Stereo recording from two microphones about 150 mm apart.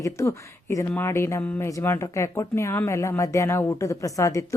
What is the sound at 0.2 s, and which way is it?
A man's voice, 20° left (ahead or behind).